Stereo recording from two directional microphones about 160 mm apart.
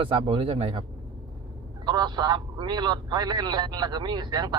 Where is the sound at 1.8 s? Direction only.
25° right (ahead or behind).